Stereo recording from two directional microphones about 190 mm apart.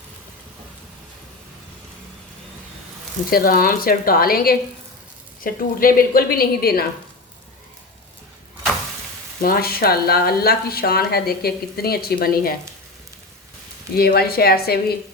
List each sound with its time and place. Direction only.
3.2 s speech: 50° left (ahead or behind)
9.4 s speech: 50° left (ahead or behind)
13.9 s speech: 55° left (ahead or behind)